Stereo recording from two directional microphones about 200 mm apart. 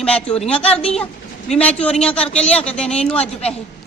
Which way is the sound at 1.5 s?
5° left (ahead or behind).